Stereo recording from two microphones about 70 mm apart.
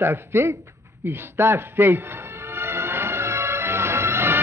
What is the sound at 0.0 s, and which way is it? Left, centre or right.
Speech, right.